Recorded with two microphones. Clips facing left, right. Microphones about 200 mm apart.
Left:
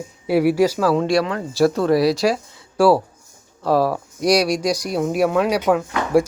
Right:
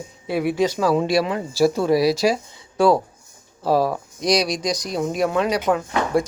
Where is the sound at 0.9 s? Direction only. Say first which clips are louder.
Left 1 dB; 5° right (ahead or behind).